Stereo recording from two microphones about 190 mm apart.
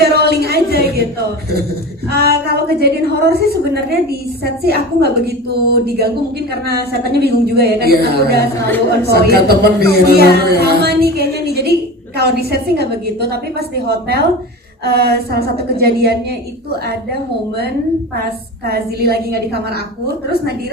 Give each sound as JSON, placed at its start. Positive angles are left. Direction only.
{"t": 0.0, "sound": "a sound", "side_deg": -60}
{"t": 2.0, "sound": "a woman's voice", "side_deg": -55}
{"t": 18.6, "sound": "a woman's voice", "side_deg": -55}